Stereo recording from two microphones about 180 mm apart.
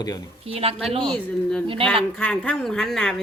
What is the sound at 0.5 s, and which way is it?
Speech, 30° right (ahead or behind).